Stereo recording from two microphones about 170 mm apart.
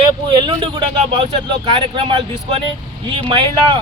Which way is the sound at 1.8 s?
30° right (ahead or behind).